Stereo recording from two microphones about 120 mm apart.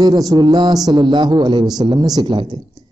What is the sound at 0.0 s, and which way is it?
A woman's voice, 30° right (ahead or behind).